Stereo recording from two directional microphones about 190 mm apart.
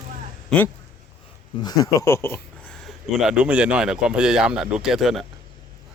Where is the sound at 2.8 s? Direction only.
5° right (ahead or behind).